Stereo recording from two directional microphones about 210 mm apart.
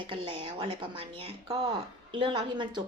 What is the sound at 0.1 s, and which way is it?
Speech, 25° right (ahead or behind).